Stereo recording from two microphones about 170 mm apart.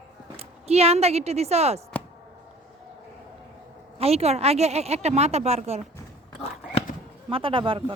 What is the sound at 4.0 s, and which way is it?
Speech, 40° right (ahead or behind).